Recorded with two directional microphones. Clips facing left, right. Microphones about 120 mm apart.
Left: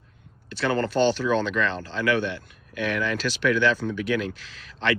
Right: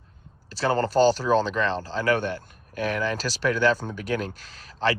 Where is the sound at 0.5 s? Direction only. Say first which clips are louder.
Right 2 dB; 35° right (ahead or behind).